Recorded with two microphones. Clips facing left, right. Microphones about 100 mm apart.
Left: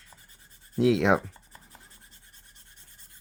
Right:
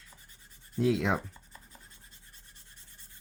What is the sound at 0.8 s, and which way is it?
Rub, 80° left.